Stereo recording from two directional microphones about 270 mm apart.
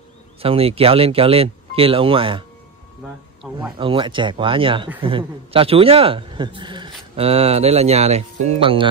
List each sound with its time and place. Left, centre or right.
0.4 s a man's voice: right
3.7 s a man's voice: centre